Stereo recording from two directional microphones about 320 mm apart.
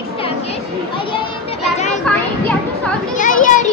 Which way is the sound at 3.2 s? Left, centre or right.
Left.